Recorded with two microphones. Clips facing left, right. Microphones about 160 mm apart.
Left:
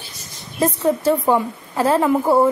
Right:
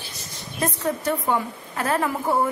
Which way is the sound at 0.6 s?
30° left (ahead or behind).